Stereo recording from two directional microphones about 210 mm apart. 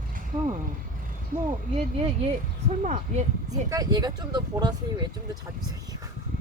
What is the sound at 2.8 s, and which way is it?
Speech, 35° right (ahead or behind).